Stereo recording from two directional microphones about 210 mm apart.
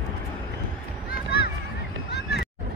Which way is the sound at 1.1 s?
50° left (ahead or behind).